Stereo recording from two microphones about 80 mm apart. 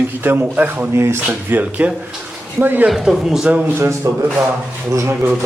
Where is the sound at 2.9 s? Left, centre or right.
Centre.